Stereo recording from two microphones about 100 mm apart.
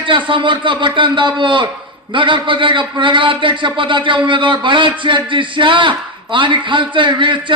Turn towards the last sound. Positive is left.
turn(degrees=-55)  # may be behind; listen again after turning